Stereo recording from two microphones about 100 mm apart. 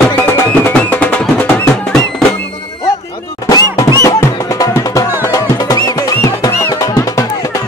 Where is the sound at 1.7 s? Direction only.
5° left (ahead or behind).